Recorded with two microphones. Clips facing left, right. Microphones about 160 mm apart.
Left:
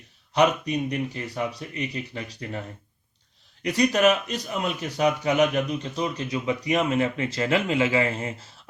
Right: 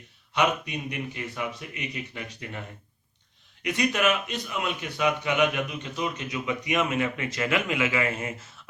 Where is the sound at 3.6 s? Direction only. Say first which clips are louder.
Left 5 dB; 35° left (ahead or behind).